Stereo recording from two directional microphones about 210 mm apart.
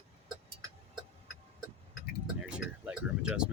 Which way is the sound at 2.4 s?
5° right (ahead or behind).